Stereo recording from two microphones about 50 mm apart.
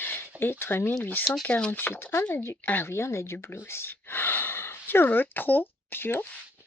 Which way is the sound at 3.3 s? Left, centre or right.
Left.